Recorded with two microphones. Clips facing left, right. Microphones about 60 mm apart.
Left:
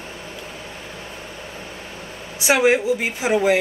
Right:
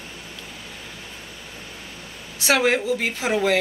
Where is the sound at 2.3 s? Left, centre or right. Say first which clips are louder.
Left 3 dB; centre.